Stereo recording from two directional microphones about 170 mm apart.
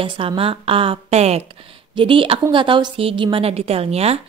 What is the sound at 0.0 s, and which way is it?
A woman's voice, 30° right (ahead or behind).